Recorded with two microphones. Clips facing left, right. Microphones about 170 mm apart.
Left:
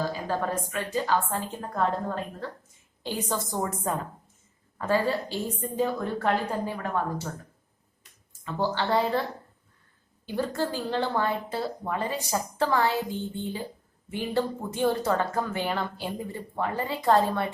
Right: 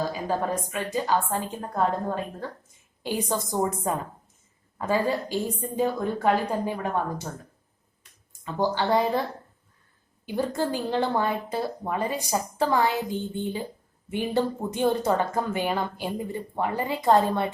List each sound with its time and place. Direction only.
0.1 s speech: 15° right (ahead or behind)
3.0 s speech: 10° right (ahead or behind)
8.3 s a woman's voice: 15° right (ahead or behind)
10.2 s speech: 15° right (ahead or behind)